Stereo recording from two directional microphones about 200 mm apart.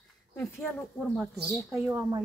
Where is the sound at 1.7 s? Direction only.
10° right (ahead or behind).